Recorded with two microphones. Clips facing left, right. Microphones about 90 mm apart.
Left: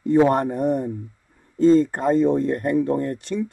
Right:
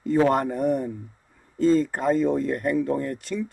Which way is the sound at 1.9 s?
35° left (ahead or behind).